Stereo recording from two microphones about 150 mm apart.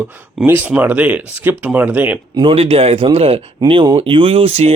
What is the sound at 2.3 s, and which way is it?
Speech, 35° right (ahead or behind).